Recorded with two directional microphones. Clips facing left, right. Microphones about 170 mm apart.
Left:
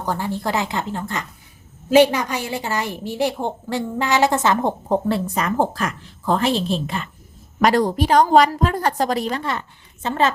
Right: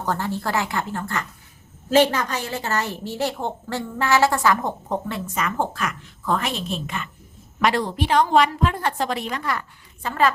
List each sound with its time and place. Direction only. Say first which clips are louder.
0.0 s a woman's voice: left 1 dB; 10° left (ahead or behind)